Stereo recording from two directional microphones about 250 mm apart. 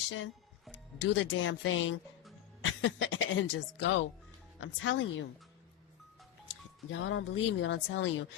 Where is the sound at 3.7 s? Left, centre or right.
Left.